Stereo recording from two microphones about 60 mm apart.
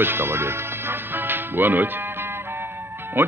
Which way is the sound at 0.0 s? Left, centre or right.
Right.